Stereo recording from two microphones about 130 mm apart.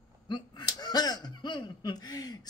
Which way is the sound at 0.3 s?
30° left (ahead or behind).